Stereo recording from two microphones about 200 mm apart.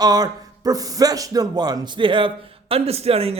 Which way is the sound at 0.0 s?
20° right (ahead or behind).